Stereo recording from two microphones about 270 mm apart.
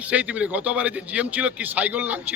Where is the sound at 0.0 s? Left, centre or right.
Centre.